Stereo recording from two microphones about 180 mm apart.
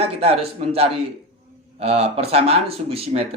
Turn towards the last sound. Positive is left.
turn(degrees=-35)  # may be behind; listen again after turning